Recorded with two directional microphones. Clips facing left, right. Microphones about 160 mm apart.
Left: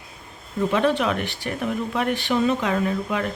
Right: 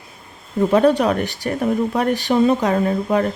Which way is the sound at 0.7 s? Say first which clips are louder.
Right 6 dB; 40° right (ahead or behind).